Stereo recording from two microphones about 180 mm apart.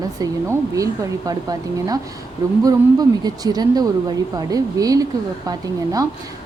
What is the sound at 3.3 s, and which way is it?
A woman's voice, 20° right (ahead or behind).